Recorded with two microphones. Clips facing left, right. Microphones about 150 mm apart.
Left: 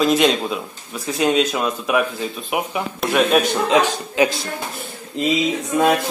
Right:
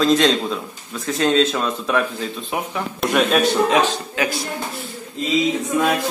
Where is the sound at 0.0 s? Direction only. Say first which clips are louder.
Even; 15° left (ahead or behind).